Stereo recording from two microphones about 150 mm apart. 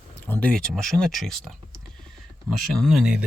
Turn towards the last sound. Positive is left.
turn(degrees=-5)  # may be behind; listen again after turning